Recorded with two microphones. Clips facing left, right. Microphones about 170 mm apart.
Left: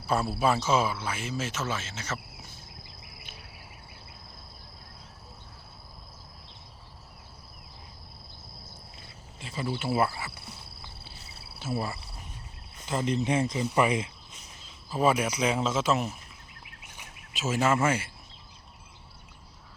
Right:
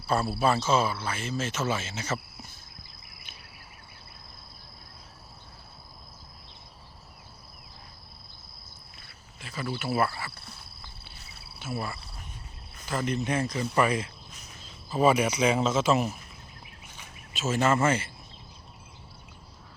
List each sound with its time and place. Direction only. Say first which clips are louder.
0.3 s cricket: right 1 dB; 10° left (ahead or behind)
1.6 s speech: right 4 dB; 5° right (ahead or behind)
9.0 s cricket: left 2 dB; 25° left (ahead or behind)
11.0 s a sound: left 2 dB; 30° left (ahead or behind)
12.8 s speech: left 1 dB; 25° left (ahead or behind)
14.8 s speech: right 2 dB; centre (ahead or behind)
16.8 s a sound: right 1 dB; 15° left (ahead or behind)